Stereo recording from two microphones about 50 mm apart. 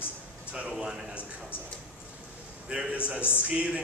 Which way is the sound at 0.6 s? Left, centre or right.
Centre.